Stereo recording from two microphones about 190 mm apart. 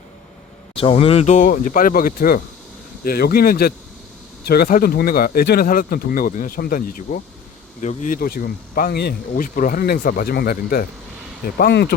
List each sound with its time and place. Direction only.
0.7 s speech: 30° left (ahead or behind); by 11.9 s 60° left (ahead or behind)